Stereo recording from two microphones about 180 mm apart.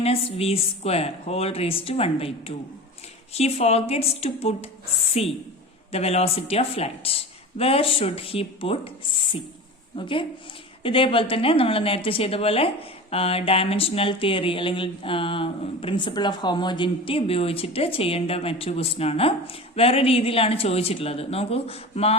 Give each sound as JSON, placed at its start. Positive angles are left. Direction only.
{"t": 0.0, "sound": "a woman's voice", "side_deg": 35}